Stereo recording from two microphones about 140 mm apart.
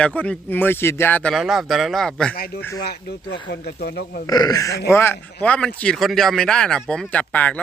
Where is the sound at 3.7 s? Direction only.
90° left.